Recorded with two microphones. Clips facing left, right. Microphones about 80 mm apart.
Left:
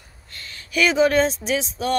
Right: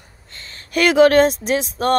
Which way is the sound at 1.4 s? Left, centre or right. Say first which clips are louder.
Right 4 dB; right.